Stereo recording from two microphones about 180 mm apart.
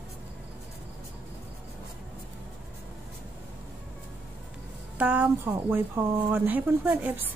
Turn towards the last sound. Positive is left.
turn(degrees=-10)  # may be behind; listen again after turning